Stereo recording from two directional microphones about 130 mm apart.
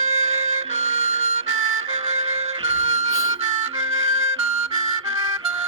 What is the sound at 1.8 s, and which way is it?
Music, 55° right (ahead or behind).